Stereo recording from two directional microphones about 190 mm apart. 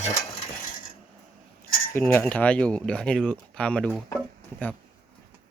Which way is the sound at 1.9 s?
10° left (ahead or behind).